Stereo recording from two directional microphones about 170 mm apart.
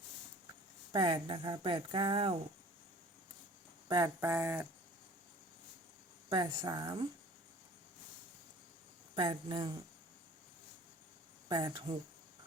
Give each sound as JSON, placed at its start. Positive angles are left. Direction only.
{"t": 0.9, "sound": "speech", "side_deg": -30}
{"t": 3.8, "sound": "speech", "side_deg": -20}
{"t": 6.2, "sound": "speech", "side_deg": -25}
{"t": 9.1, "sound": "speech", "side_deg": -30}
{"t": 11.4, "sound": "speech", "side_deg": -25}